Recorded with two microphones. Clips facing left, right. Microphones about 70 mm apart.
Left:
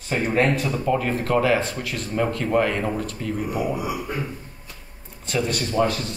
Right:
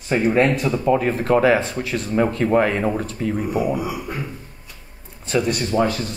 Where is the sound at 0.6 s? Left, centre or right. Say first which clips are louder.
Right 4 dB; right.